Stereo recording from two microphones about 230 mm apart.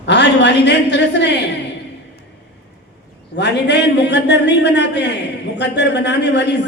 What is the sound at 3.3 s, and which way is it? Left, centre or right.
A man's voice, left.